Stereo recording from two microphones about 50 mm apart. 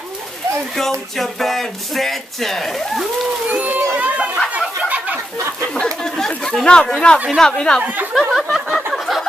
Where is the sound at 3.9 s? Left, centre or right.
Right.